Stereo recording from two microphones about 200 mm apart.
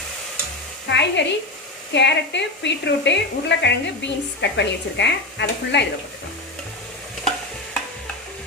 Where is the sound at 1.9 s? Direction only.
60° left (ahead or behind).